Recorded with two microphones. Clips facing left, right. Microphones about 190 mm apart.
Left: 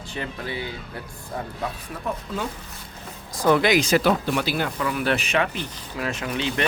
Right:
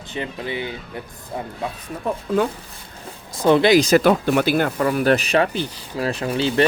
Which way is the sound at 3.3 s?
25° right (ahead or behind).